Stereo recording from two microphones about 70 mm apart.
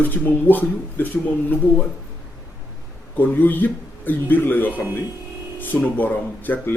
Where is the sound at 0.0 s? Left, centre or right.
Left.